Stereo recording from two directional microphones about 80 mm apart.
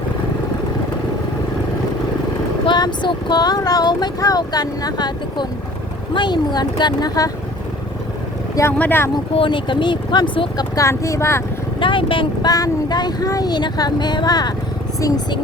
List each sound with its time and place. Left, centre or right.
2.6 s speech: left
8.8 s speech: left
9.4 s speech: left
10.8 s speech: left
11.8 s speech: left
12.5 s speech: left
13.5 s speech: left